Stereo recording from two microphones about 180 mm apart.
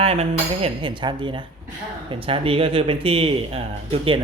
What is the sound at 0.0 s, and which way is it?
Speech, 35° right (ahead or behind).